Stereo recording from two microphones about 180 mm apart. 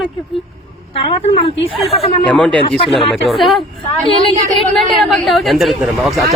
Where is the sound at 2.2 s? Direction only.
5° left (ahead or behind).